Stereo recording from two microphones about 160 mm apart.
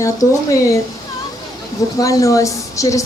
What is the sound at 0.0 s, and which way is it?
Speech, 20° left (ahead or behind).